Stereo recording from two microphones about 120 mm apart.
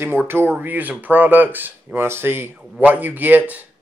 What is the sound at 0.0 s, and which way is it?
Speech, 15° right (ahead or behind).